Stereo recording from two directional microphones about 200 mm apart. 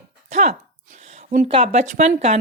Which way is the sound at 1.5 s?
30° right (ahead or behind).